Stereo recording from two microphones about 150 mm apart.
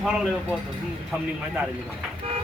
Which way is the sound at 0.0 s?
5° right (ahead or behind).